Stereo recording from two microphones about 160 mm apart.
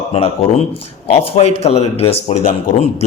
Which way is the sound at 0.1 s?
40° left (ahead or behind).